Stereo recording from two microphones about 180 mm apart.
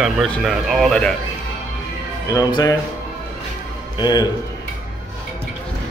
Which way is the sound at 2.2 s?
20° left (ahead or behind).